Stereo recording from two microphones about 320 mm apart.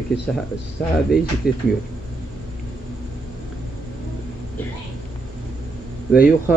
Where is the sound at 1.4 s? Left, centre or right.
Left.